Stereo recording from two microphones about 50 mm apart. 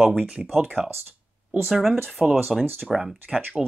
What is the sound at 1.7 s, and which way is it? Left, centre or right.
Speech, centre.